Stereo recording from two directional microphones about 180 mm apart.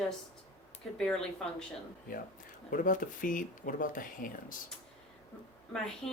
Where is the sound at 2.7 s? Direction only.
50° left (ahead or behind).